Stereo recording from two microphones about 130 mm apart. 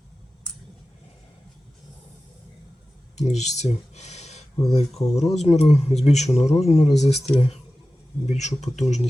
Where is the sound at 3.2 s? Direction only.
60° left (ahead or behind).